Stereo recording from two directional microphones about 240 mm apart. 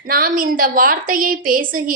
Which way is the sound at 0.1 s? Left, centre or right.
Right.